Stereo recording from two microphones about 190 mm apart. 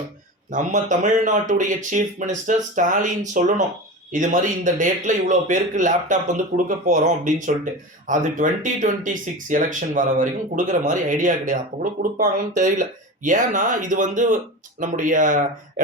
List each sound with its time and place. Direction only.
0.5 s a man's voice: 40° right (ahead or behind)